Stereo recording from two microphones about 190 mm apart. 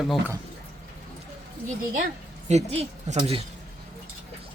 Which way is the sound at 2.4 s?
35° right (ahead or behind).